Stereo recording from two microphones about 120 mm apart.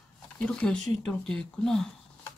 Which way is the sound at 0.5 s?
5° left (ahead or behind).